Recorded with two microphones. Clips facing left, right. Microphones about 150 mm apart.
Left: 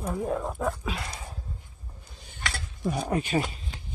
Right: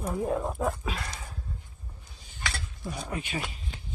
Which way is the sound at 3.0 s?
40° left (ahead or behind).